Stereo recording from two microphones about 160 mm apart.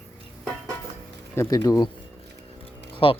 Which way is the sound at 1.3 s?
20° left (ahead or behind).